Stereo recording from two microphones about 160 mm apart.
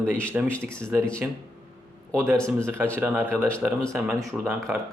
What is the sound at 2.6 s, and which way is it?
Speech, 15° right (ahead or behind).